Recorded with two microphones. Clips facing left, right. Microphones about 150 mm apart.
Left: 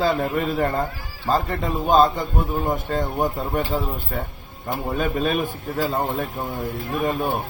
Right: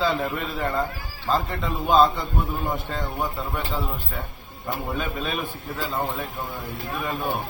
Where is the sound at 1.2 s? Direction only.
45° left (ahead or behind).